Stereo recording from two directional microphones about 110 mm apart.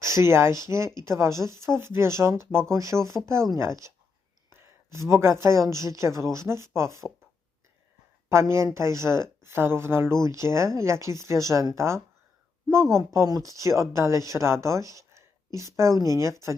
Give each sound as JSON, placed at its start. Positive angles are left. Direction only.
{"t": 0.0, "sound": "speech", "side_deg": -25}
{"t": 8.3, "sound": "speech", "side_deg": -25}